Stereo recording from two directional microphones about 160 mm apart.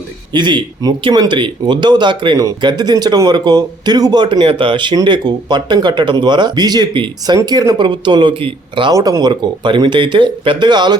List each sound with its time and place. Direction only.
0.3 s speech: 30° right (ahead or behind)